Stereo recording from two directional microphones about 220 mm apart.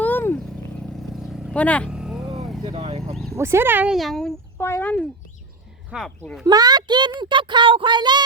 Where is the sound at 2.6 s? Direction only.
25° right (ahead or behind).